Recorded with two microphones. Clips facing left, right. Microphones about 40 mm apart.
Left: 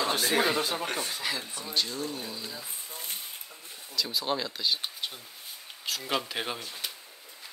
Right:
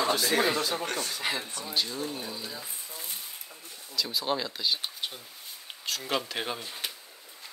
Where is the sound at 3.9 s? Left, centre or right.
Centre.